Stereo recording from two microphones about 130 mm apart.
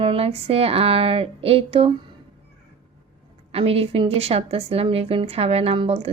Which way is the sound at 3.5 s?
50° right (ahead or behind).